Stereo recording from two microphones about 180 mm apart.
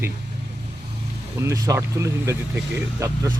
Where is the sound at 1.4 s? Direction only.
15° right (ahead or behind).